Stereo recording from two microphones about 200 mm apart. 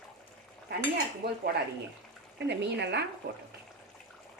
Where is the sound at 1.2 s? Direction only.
55° right (ahead or behind).